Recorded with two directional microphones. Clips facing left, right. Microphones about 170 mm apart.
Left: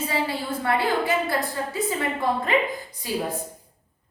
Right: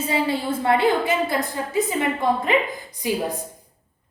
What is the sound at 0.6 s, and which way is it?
Speech, 20° right (ahead or behind).